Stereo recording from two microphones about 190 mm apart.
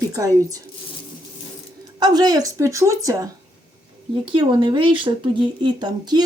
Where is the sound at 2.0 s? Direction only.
20° right (ahead or behind).